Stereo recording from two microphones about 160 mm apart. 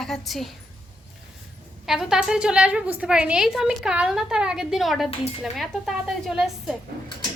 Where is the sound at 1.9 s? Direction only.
5° right (ahead or behind).